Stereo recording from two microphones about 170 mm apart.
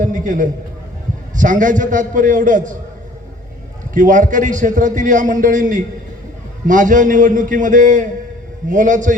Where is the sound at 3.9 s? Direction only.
50° right (ahead or behind).